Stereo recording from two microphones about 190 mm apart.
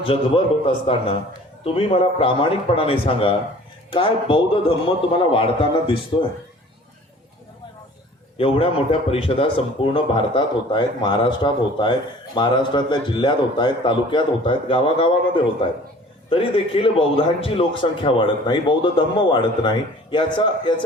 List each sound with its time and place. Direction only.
0.0 s a man's voice: 30° left (ahead or behind)
8.4 s a man's voice: 30° left (ahead or behind)